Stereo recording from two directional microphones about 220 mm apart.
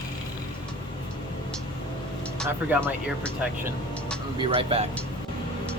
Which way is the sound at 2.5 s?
10° right (ahead or behind).